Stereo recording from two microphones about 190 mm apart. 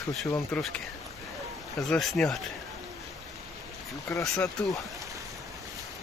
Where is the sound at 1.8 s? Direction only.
Centre (ahead or behind).